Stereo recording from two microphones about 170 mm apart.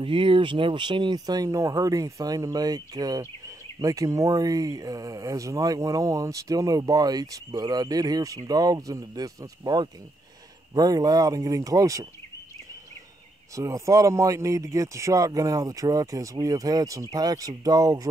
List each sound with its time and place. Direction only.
0.0 s speech: 30° right (ahead or behind)
13.6 s speech: 20° right (ahead or behind)